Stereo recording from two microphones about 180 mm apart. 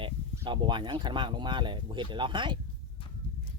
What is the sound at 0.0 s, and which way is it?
Speech, 25° right (ahead or behind).